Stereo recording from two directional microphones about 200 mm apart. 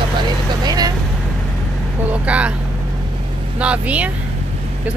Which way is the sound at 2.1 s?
5° right (ahead or behind).